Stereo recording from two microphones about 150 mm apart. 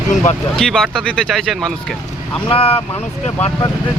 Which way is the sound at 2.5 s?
40° left (ahead or behind).